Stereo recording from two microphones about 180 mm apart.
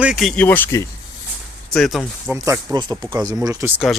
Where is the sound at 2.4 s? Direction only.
20° right (ahead or behind).